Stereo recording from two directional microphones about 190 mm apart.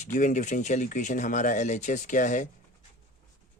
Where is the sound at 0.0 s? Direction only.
40° left (ahead or behind).